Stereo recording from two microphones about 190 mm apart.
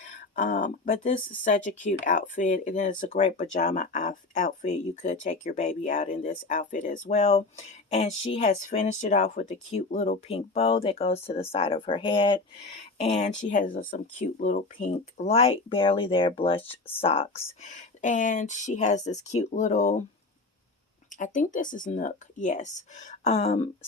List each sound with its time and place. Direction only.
0.3 s speech: 45° left (ahead or behind); by 12.4 s 25° left (ahead or behind)
13.0 s speech: 35° left (ahead or behind)
21.1 s speech: 40° left (ahead or behind)